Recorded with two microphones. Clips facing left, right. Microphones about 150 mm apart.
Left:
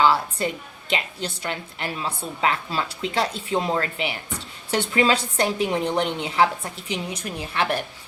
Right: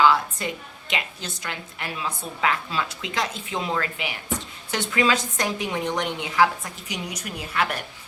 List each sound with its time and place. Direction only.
0.0 s a woman's voice: 35° left (ahead or behind)